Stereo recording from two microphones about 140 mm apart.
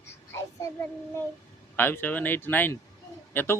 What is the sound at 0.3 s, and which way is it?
Child singing, 20° left (ahead or behind).